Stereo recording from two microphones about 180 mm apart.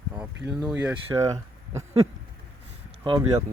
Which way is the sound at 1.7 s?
15° right (ahead or behind).